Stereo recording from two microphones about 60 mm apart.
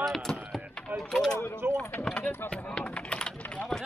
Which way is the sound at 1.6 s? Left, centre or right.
Right.